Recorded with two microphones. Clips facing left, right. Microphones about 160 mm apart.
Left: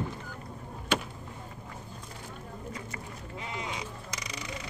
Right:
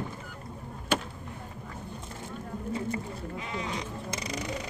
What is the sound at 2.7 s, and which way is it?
Speech, 25° right (ahead or behind).